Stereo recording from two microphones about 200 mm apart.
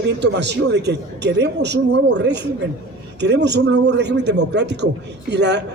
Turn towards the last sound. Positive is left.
turn(degrees=-60)  # may be behind; listen again after turning